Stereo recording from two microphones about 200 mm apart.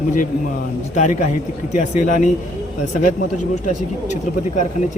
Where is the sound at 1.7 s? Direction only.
40° left (ahead or behind).